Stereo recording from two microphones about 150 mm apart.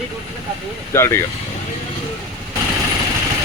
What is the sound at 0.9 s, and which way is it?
Speech, 15° left (ahead or behind).